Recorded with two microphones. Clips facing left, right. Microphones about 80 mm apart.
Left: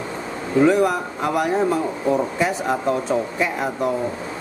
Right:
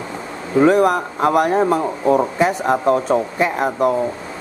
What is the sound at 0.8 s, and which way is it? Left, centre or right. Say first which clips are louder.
Speech: right 5 dB; right.